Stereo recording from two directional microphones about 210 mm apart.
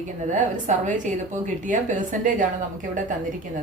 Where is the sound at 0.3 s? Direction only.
35° right (ahead or behind).